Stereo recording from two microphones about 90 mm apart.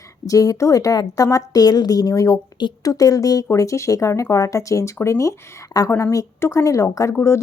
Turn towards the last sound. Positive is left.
turn(degrees=30)  # may be behind; listen again after turning